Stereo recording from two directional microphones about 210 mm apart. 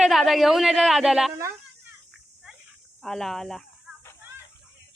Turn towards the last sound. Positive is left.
turn(degrees=0)  # may be behind; listen again after turning